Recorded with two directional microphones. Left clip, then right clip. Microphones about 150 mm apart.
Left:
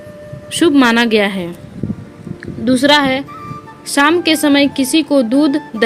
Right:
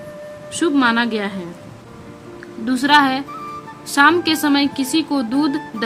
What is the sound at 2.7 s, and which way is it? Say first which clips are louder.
A woman's voice: left 3 dB; 30° left (ahead or behind).